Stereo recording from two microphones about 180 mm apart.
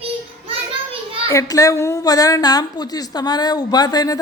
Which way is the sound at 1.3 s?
20° left (ahead or behind).